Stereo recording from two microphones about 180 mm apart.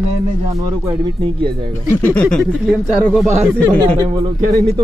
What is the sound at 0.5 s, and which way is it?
Speech, 20° right (ahead or behind).